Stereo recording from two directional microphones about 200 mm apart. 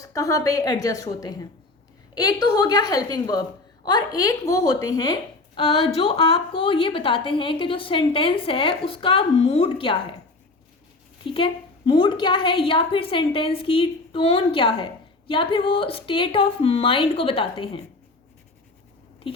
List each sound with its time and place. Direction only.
0.0 s a woman's voice: 15° left (ahead or behind)
11.3 s a woman's voice: 25° left (ahead or behind)